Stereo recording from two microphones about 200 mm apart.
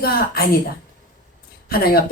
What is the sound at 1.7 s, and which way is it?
Speech, 50° left (ahead or behind).